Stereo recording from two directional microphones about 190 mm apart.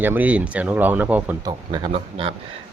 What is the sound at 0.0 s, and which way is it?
Speech, 10° right (ahead or behind).